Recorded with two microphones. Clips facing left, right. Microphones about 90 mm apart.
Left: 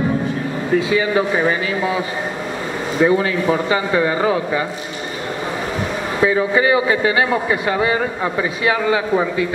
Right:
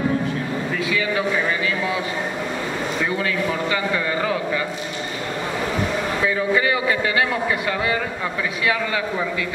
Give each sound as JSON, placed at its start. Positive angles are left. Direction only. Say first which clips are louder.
{"t": 0.7, "sound": "speech", "louder": "left 8 dB", "side_deg": 30}
{"t": 3.0, "sound": "a man's voice", "louder": "left 10 dB", "side_deg": 30}
{"t": 6.2, "sound": "a man's voice", "louder": "left 6 dB", "side_deg": 25}